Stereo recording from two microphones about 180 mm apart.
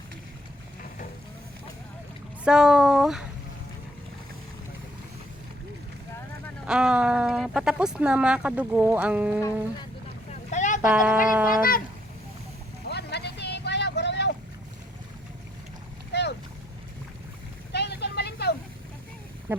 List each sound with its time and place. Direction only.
2.4 s speech: 5° right (ahead or behind)
6.7 s speech: 5° right (ahead or behind)
10.5 s a sound: 40° left (ahead or behind)
10.8 s speech: 5° right (ahead or behind)
12.9 s vehicle: 65° left (ahead or behind)
16.1 s boat: 70° left (ahead or behind)
17.7 s vehicle: 70° left (ahead or behind)
19.5 s a sound: 10° right (ahead or behind)